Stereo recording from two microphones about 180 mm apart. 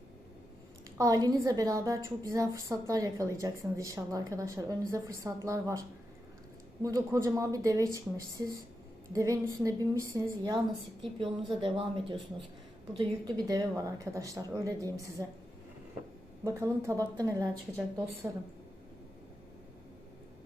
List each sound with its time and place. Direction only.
0.9 s a woman's voice: 20° right (ahead or behind)
6.8 s a woman's voice: 20° right (ahead or behind)
11.2 s speech: 30° right (ahead or behind)
16.4 s a woman's voice: 15° right (ahead or behind)